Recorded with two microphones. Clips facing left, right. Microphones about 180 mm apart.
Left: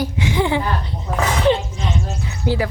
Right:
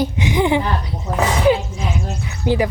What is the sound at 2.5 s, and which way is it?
Speech, 20° right (ahead or behind).